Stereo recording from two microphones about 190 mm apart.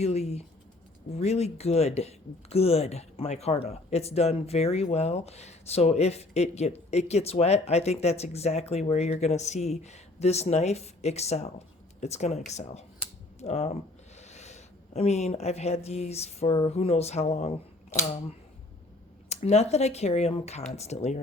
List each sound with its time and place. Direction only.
0.0 s speech: 35° left (ahead or behind)
19.3 s speech: 35° left (ahead or behind)